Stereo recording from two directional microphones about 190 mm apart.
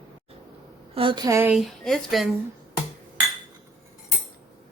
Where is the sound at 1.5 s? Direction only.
Centre (ahead or behind).